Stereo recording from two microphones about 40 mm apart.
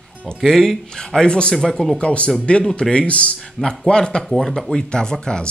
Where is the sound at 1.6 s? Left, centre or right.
Centre.